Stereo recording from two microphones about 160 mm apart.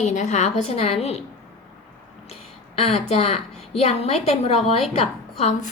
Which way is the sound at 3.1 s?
40° left (ahead or behind).